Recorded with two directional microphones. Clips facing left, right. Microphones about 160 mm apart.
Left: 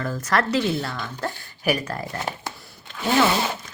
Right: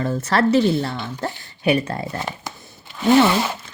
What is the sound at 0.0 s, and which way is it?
A woman's voice, 25° right (ahead or behind).